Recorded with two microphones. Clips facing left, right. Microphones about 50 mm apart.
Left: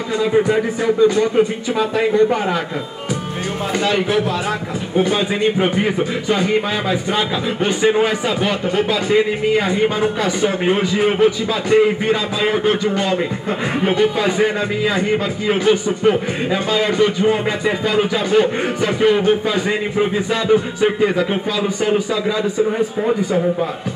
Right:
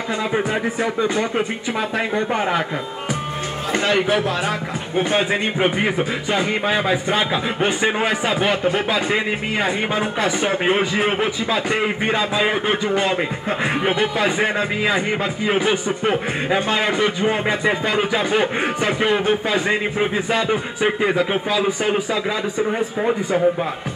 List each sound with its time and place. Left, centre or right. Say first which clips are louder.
0.2 s a man's voice: left 7 dB; centre
3.7 s a man's voice: even; right
5.6 s a man's voice: left 2 dB; centre
10.4 s a man's voice: left 3 dB; right